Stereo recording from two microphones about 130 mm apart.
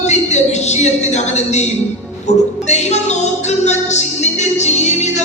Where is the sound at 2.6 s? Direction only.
60° left (ahead or behind).